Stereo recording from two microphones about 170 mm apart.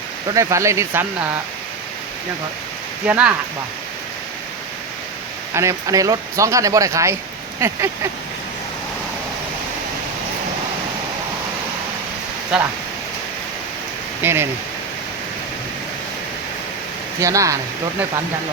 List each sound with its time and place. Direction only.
0.3 s speech: 20° right (ahead or behind)
3.1 s speech: 10° right (ahead or behind)
5.5 s speech: 20° right (ahead or behind)
12.5 s speech: 5° right (ahead or behind)
14.2 s speech: 15° right (ahead or behind)
17.2 s speech: 20° right (ahead or behind)